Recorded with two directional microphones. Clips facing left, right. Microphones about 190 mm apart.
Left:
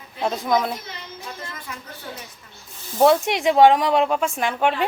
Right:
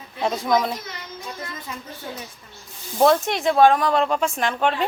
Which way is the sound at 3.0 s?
10° left (ahead or behind).